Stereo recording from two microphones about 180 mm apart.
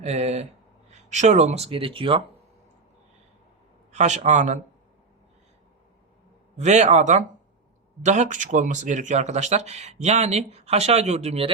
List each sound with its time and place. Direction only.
0.0 s speech: 35° right (ahead or behind)
3.9 s speech: 40° right (ahead or behind)
6.6 s speech: 40° right (ahead or behind)